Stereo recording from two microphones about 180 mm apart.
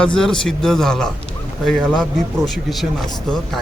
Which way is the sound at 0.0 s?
5° left (ahead or behind).